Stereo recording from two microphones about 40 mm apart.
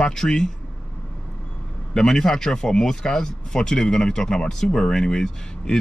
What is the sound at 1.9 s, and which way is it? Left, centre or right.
Speech, centre.